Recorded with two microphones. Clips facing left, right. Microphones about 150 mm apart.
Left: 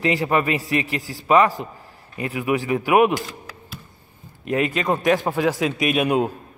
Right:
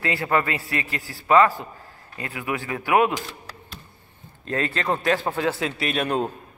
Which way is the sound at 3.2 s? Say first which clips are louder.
Left 3 dB; 10° left (ahead or behind).